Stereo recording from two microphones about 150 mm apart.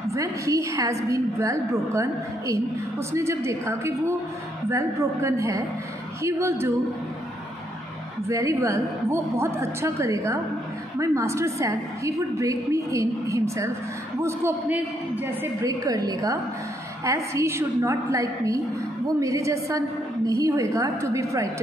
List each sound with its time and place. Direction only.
0.1 s a woman's voice: 20° right (ahead or behind)
8.3 s a woman's voice: 20° right (ahead or behind)